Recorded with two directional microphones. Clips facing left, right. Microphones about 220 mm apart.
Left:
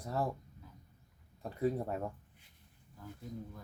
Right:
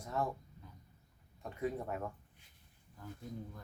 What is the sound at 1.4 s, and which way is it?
Speech, 35° left (ahead or behind).